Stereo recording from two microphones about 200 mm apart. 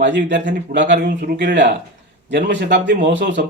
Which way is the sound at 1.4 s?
60° right (ahead or behind).